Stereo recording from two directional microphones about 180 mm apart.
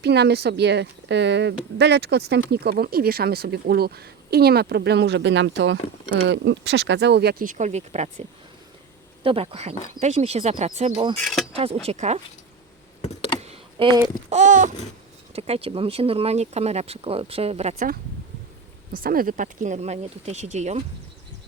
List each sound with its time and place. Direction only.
0.0 s a woman's voice: 65° right (ahead or behind); by 8.1 s 40° right (ahead or behind)
9.2 s speech: 30° right (ahead or behind)
11.2 s speech: centre (ahead or behind)
11.5 s speech: 35° right (ahead or behind)
13.4 s computer keyboard: 30° right (ahead or behind)
14.3 s a sound: 40° right (ahead or behind)
15.4 s speech: 35° right (ahead or behind)
19.0 s speech: 50° right (ahead or behind)